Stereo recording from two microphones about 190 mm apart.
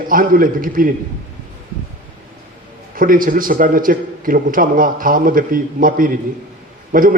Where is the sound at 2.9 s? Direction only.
45° right (ahead or behind).